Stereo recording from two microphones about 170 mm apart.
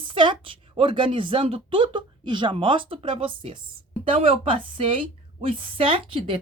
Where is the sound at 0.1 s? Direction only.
30° right (ahead or behind).